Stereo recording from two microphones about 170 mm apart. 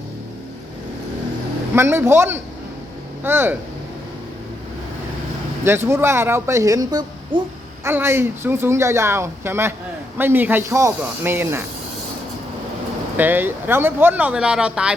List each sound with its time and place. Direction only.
1.7 s speech: 15° right (ahead or behind)
5.6 s a child's voice: 15° right (ahead or behind)
7.9 s speech: 15° right (ahead or behind)
13.1 s speech: 10° right (ahead or behind)